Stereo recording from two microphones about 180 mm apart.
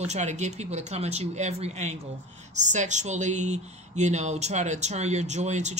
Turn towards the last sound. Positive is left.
turn(degrees=-40)  # may be behind; listen again after turning